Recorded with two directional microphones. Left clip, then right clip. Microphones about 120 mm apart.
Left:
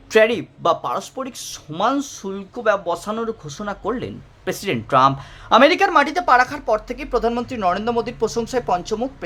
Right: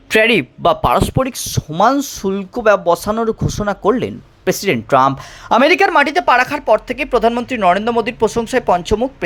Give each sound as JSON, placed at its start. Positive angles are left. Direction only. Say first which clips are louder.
{"t": 0.1, "sound": "speech", "louder": "right 3 dB", "side_deg": -45}
{"t": 5.9, "sound": "speech", "louder": "right 3 dB", "side_deg": -25}